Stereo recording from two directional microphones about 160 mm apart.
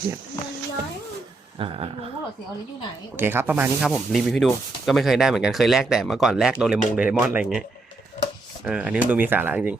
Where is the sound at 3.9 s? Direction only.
Centre (ahead or behind).